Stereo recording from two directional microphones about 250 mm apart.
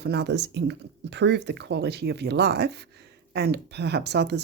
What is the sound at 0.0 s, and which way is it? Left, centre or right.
Speech, right.